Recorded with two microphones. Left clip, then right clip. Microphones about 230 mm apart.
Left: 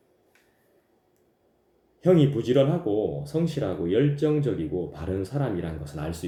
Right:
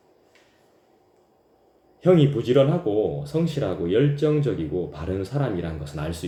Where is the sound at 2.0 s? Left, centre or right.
Centre.